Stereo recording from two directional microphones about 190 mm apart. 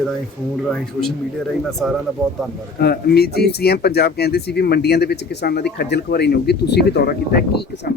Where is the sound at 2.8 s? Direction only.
55° left (ahead or behind).